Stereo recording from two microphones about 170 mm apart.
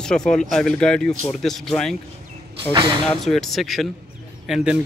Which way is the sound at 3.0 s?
Centre (ahead or behind).